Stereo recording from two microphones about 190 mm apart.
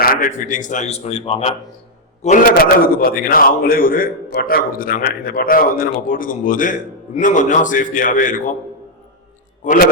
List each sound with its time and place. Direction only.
0.0 s a man's voice: 45° left (ahead or behind)
2.2 s a man's voice: 45° left (ahead or behind)
9.6 s a man's voice: 45° left (ahead or behind)